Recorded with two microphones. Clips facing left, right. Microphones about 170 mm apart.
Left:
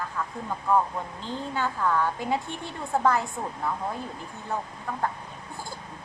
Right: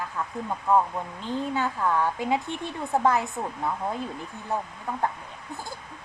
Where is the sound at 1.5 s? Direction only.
20° right (ahead or behind).